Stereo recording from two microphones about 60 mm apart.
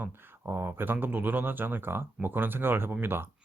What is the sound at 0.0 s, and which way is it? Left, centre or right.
Speech, right.